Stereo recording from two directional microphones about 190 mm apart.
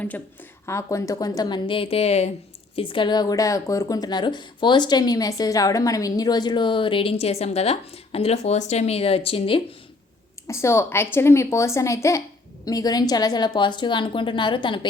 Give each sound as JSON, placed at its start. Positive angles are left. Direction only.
{"t": 0.6, "sound": "speech", "side_deg": 15}
{"t": 10.4, "sound": "speech", "side_deg": 15}